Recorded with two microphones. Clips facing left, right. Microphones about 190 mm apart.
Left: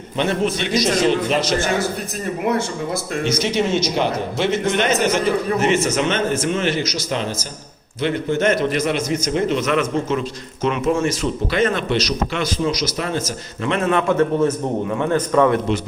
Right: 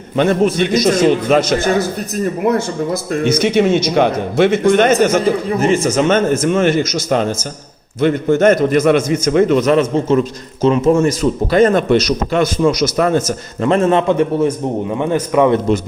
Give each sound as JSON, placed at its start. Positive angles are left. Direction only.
{"t": 0.2, "sound": "a man's voice", "side_deg": -50}
{"t": 3.1, "sound": "a man's voice", "side_deg": -55}
{"t": 9.6, "sound": "a man's voice", "side_deg": -35}
{"t": 14.2, "sound": "a man's voice", "side_deg": -15}